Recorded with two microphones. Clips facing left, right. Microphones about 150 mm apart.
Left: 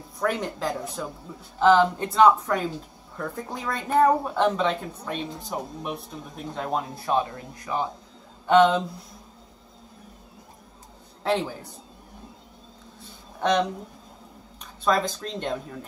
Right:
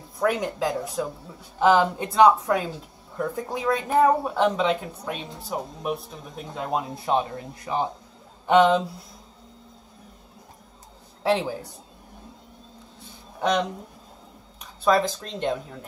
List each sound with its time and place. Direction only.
0.2 s speech: 5° right (ahead or behind)
6.7 s speech: 20° right (ahead or behind)
8.5 s speech: 10° right (ahead or behind)
11.2 s speech: 10° right (ahead or behind)
13.4 s speech: 10° right (ahead or behind)